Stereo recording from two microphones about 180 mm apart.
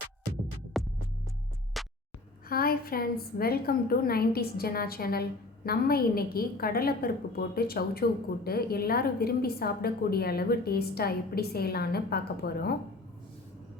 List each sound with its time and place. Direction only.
0.7 s music: centre (ahead or behind)
2.5 s a woman's voice: 55° left (ahead or behind)